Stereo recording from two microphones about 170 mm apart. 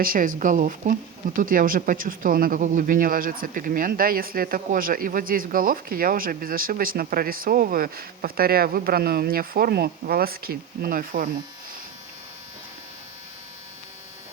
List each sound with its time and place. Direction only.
0.0 s speech: 55° right (ahead or behind)